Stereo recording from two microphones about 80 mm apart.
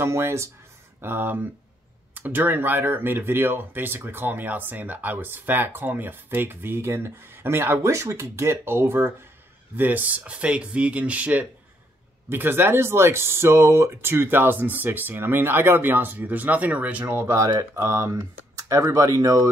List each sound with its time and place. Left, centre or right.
0.0 s speech: right; by 17.0 s centre
17.0 s speech: right